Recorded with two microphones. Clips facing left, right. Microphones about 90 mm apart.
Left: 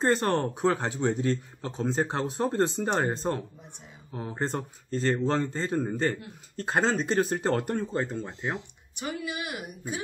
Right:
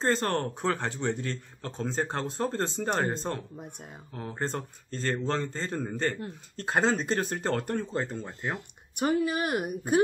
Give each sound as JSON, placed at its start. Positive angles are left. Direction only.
{"t": 0.0, "sound": "a man's voice", "side_deg": 15}
{"t": 6.6, "sound": "a man's voice", "side_deg": -5}
{"t": 7.9, "sound": "speech", "side_deg": 0}
{"t": 8.5, "sound": "speech", "side_deg": -50}